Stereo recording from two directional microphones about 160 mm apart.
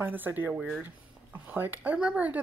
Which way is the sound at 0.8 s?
10° right (ahead or behind).